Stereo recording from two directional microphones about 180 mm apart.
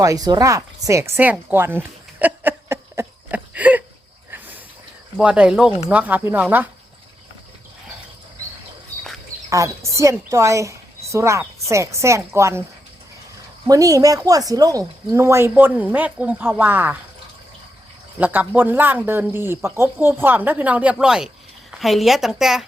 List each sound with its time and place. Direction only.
0.0 s a sound: 20° right (ahead or behind)
4.3 s vehicle: 10° right (ahead or behind)
5.1 s a woman's voice: 5° right (ahead or behind)
9.5 s speech: 15° right (ahead or behind)
13.7 s speech: 20° right (ahead or behind)
18.2 s a woman's voice: 10° right (ahead or behind)